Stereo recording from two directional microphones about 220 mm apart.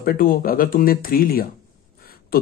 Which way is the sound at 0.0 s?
40° left (ahead or behind).